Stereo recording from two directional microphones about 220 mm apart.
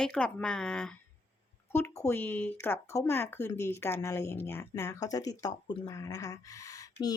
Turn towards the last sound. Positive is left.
turn(degrees=15)  # may be behind; listen again after turning